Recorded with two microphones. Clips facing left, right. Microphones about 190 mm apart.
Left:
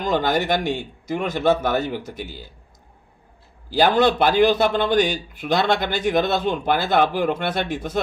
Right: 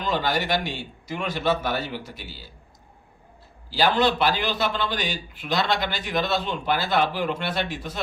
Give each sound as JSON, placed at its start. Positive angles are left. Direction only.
{"t": 0.0, "sound": "a man's voice", "side_deg": 50}
{"t": 3.7, "sound": "a man's voice", "side_deg": 50}